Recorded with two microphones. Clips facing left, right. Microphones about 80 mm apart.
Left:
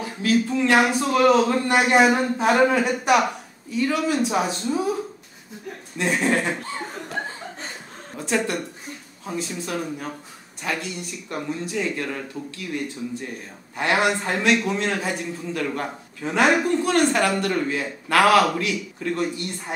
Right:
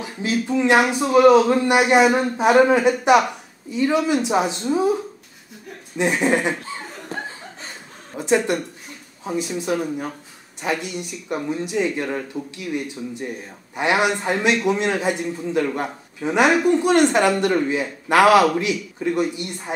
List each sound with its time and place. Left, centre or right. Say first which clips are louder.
0.0 s a man's voice: left 2 dB; centre
5.9 s speech: right 3 dB; centre
8.2 s a man's voice: right 5 dB; centre